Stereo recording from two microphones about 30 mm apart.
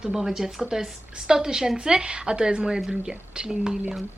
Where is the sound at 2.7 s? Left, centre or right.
Centre.